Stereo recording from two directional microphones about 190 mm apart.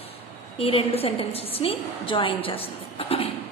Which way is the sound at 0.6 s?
30° left (ahead or behind).